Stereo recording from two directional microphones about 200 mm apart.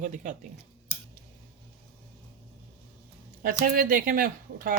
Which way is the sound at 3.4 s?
45° right (ahead or behind).